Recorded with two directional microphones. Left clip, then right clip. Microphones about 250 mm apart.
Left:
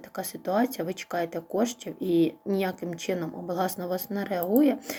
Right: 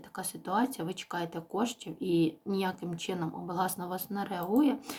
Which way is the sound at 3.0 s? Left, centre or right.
Centre.